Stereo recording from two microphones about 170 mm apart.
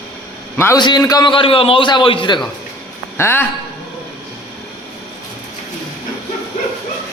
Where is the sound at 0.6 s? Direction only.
15° left (ahead or behind); by 2.3 s 30° left (ahead or behind).